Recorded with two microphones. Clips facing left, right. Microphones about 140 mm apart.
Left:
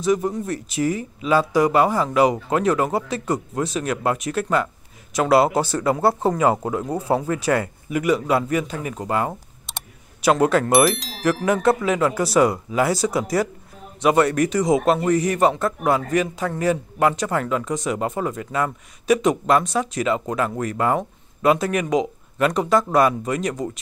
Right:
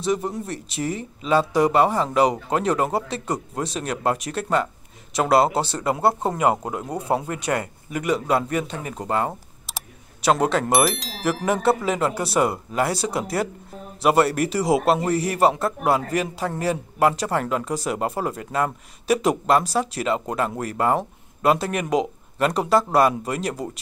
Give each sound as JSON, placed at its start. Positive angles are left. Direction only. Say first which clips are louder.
{"t": 0.0, "sound": "a man's voice", "louder": "left 3 dB", "side_deg": 0}
{"t": 5.5, "sound": "speech", "louder": "left 3 dB", "side_deg": -30}
{"t": 6.2, "sound": "a man's voice", "louder": "left 2 dB", "side_deg": -5}